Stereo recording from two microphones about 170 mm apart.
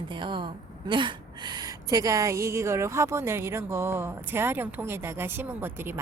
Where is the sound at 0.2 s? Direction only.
30° right (ahead or behind).